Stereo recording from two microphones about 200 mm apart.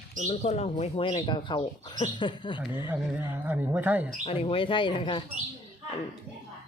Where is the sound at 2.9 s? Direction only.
10° right (ahead or behind).